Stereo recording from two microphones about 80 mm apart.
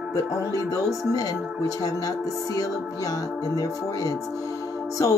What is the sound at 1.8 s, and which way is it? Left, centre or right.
Speech, left.